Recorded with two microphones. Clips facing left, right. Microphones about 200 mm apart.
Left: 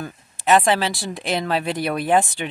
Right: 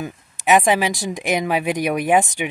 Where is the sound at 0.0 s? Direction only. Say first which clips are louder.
Right 1 dB; 15° right (ahead or behind).